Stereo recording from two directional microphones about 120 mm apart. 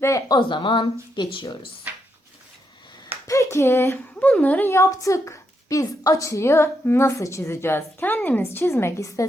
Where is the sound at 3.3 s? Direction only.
25° left (ahead or behind).